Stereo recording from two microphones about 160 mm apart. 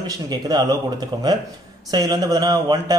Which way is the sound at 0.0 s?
25° right (ahead or behind).